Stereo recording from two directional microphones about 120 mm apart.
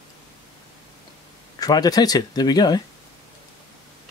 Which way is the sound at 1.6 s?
30° left (ahead or behind).